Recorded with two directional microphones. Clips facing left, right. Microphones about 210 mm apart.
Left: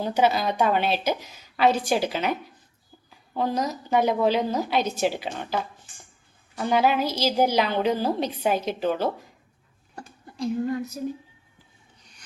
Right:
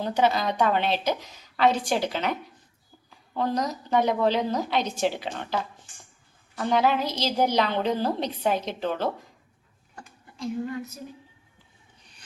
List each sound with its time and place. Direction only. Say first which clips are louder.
0.0 s a woman's voice: left 1 dB; 5° left (ahead or behind)
6.6 s a woman's voice: left 1 dB; 5° left (ahead or behind)
9.9 s a sound: left 5 dB; 35° left (ahead or behind)